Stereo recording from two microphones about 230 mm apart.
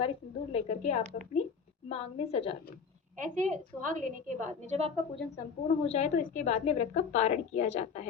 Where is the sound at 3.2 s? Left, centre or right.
Right.